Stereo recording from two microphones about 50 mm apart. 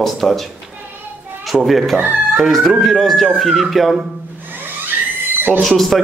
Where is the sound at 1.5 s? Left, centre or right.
Centre.